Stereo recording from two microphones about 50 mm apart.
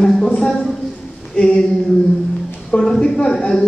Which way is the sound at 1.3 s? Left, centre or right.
Centre.